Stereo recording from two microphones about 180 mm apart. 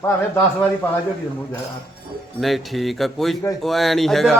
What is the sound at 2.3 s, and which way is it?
A man's voice, centre (ahead or behind).